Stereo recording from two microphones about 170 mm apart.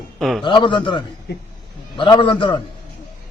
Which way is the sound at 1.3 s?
65° left (ahead or behind).